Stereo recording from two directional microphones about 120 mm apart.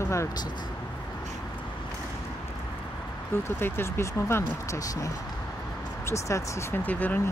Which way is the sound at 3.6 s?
20° left (ahead or behind).